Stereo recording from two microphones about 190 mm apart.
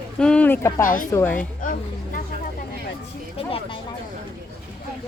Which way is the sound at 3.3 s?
30° left (ahead or behind).